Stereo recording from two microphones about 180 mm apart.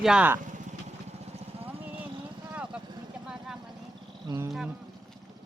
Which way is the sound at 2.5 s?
5° right (ahead or behind).